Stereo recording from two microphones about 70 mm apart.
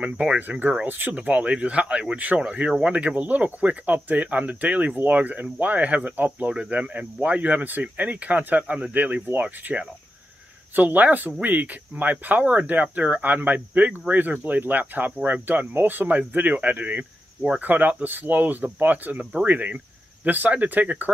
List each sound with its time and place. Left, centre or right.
0.0 s speech: right